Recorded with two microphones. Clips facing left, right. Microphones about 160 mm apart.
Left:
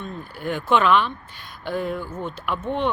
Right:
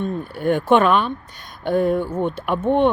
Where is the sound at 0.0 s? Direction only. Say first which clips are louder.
Right 8 dB; 50° right (ahead or behind).